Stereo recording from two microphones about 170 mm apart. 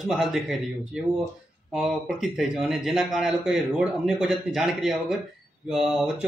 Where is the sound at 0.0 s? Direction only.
Centre (ahead or behind).